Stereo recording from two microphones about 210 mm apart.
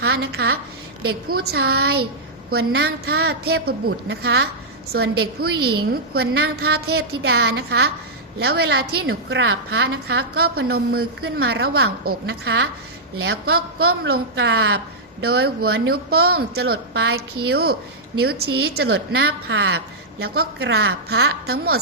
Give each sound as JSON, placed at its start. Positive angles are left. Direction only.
{"t": 0.0, "sound": "a woman's voice", "side_deg": -50}